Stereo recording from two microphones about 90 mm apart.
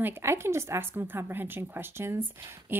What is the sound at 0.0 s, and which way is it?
A woman's voice, 25° right (ahead or behind).